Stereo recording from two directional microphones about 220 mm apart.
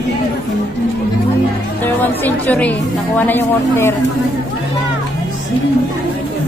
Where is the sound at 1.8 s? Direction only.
10° left (ahead or behind).